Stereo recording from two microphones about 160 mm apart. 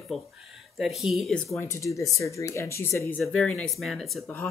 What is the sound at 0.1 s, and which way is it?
Speech, centre (ahead or behind).